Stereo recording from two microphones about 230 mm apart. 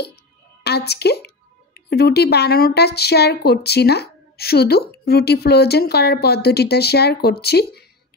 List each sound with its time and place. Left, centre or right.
0.7 s speech: left